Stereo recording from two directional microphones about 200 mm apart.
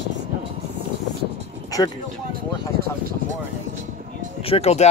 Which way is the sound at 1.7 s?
15° left (ahead or behind).